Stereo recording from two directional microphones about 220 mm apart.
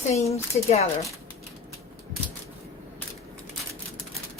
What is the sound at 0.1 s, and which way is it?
Speech, 30° left (ahead or behind).